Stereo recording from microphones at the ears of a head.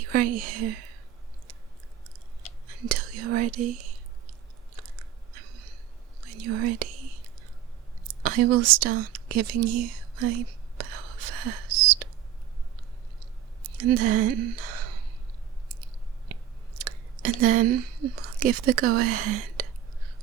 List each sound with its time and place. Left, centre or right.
0.0 s speech: right
2.6 s speech: right
4.7 s biting: right
6.2 s whispering: right
12.7 s a sound: right
16.3 s chewing: right